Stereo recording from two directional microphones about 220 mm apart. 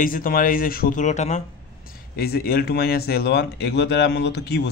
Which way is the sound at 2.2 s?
45° left (ahead or behind).